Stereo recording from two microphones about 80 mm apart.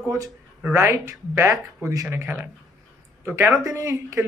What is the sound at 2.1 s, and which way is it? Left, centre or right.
Speech, right.